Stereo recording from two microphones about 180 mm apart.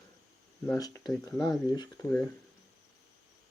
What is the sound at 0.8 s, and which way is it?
Speech, 20° left (ahead or behind).